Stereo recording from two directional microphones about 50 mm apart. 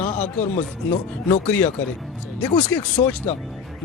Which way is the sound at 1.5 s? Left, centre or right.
Left.